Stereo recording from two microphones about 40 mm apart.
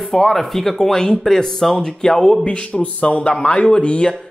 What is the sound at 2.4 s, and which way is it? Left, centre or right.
Speech, left.